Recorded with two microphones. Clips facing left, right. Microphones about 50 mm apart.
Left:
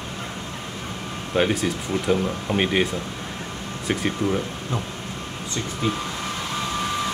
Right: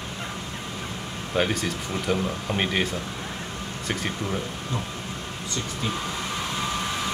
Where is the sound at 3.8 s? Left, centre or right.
Centre.